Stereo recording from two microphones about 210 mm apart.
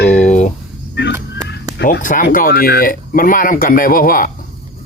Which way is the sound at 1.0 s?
55° left (ahead or behind).